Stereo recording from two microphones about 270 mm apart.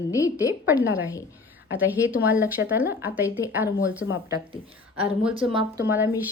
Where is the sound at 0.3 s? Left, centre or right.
Centre.